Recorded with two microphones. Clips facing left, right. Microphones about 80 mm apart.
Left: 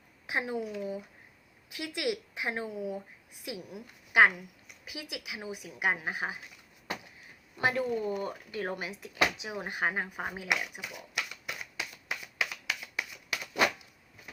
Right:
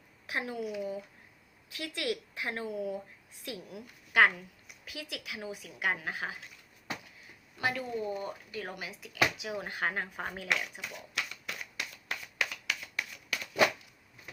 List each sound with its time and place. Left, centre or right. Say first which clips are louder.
0.3 s speech: left 3 dB; left
0.6 s speech: right 1 dB; centre
1.7 s a woman's voice: left 2 dB; centre
7.6 s speech: left 4 dB; left; by 12.5 s centre
12.6 s shuffling cards: left 1 dB; centre